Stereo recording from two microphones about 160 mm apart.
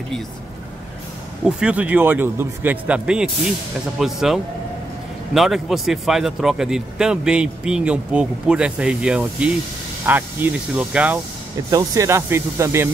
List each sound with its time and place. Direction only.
1.4 s a man's voice: 5° right (ahead or behind)
11.7 s a man's voice: 20° right (ahead or behind)